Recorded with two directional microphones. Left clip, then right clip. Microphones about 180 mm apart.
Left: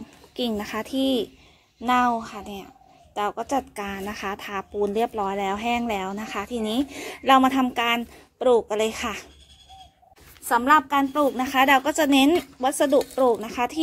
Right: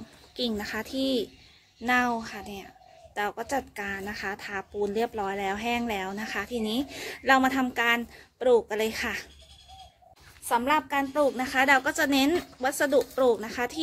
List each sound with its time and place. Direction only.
0.6 s a woman's voice: 30° left (ahead or behind)
10.4 s a woman's voice: 40° left (ahead or behind)